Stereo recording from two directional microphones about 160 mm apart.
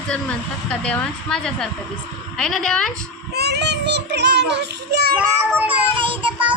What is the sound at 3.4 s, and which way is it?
A child's voice, 90° right.